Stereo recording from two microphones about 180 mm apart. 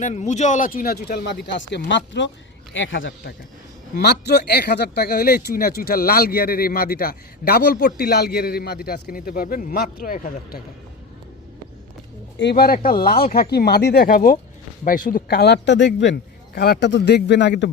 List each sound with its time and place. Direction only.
0.0 s a man's voice: 40° left (ahead or behind); by 3.3 s 80° left
4.0 s speech: 70° left (ahead or behind); by 10.6 s 50° left (ahead or behind)
12.4 s a man's voice: 65° left (ahead or behind)